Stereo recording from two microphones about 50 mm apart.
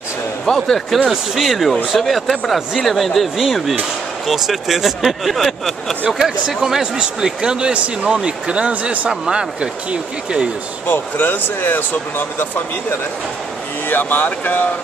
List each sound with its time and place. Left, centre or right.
0.7 s speech: centre
0.9 s speech: centre
6.1 s speech: centre
10.9 s speech: left
13.8 s speech: left